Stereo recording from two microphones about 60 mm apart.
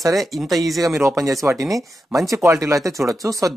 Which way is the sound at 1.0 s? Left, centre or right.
Right.